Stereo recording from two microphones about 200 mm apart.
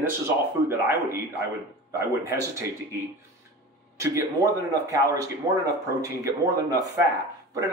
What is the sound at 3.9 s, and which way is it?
Speech, 15° right (ahead or behind).